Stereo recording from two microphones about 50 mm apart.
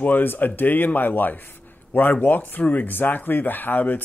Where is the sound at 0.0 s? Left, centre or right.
Left.